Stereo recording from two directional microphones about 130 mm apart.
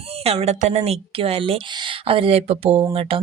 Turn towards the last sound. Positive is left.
turn(degrees=-50)  # may be behind; listen again after turning